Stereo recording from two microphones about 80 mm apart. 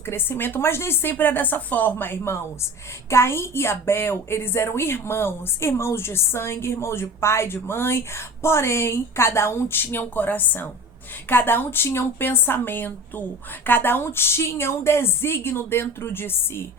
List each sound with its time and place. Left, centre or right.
0.0 s a woman's voice: left